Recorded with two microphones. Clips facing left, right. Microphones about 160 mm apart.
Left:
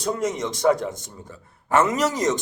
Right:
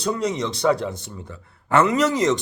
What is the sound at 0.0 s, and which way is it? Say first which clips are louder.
Speech: right 1 dB; 45° left (ahead or behind).